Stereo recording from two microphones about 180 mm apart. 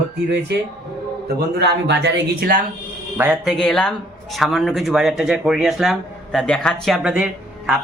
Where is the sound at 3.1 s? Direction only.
10° right (ahead or behind).